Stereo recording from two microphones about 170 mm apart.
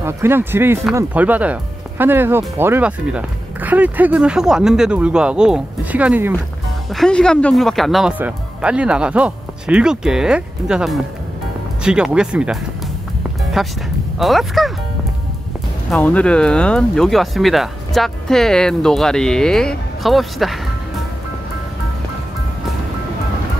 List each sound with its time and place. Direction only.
0.0 s speech: 15° right (ahead or behind)
6.9 s speech: 5° left (ahead or behind)
13.4 s music: centre (ahead or behind)
14.1 s speech: centre (ahead or behind)
15.9 s speech: 10° left (ahead or behind)